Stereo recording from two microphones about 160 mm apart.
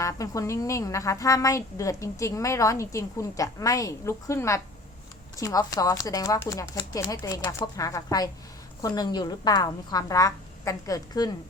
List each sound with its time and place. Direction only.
0.0 s speech: 20° left (ahead or behind)